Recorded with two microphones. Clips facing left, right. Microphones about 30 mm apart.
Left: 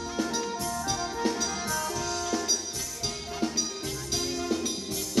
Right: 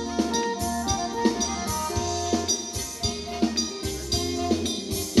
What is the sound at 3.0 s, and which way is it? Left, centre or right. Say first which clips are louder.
Music: right 5 dB; right.